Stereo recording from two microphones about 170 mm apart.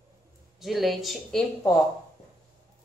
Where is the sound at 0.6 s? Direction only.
Centre (ahead or behind).